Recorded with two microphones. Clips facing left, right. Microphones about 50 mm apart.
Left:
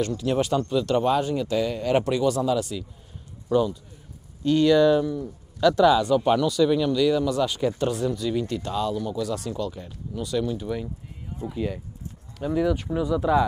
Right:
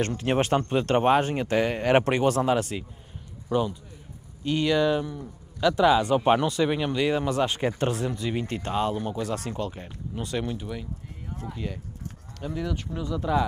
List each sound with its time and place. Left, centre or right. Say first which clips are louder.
0.0 s speech: left 1 dB; right
3.5 s a man's voice: left 4 dB; right
11.5 s speech: left 6 dB; centre